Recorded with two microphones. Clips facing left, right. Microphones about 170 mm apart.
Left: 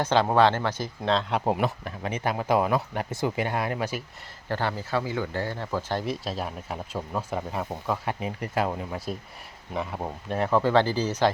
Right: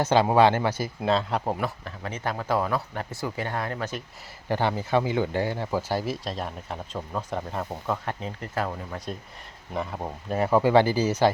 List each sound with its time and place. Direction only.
0.0 s speech: 10° right (ahead or behind)
1.5 s speech: 20° left (ahead or behind)
4.4 s speech: 15° right (ahead or behind); by 9.0 s 15° left (ahead or behind)
9.7 s speech: centre (ahead or behind)